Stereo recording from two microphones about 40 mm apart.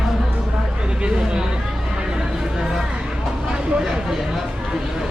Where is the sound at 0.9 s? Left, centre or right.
Right.